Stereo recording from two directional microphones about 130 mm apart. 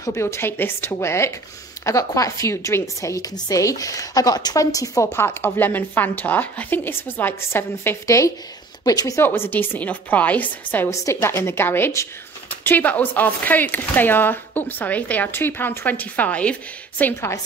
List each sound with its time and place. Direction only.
0.0 s a woman's voice: 20° left (ahead or behind)